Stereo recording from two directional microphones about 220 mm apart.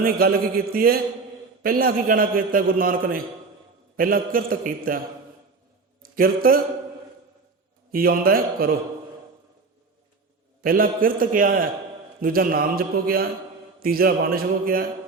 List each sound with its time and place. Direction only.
0.0 s a man's voice: 45° right (ahead or behind)
6.0 s a man's voice: 40° right (ahead or behind)
7.9 s a man's voice: 40° right (ahead or behind)
10.6 s a man's voice: 40° right (ahead or behind)